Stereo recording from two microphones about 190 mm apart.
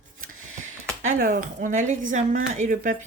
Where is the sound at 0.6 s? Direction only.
40° right (ahead or behind).